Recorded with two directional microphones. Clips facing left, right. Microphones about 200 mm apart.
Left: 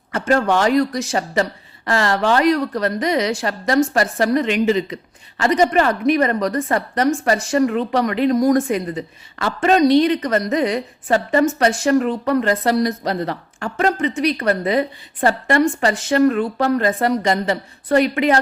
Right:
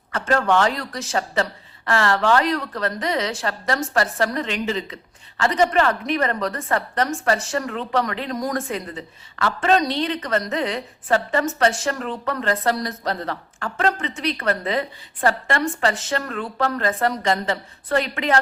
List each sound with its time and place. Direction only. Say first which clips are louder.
0.1 s a woman's voice: left 3 dB; 15° left (ahead or behind)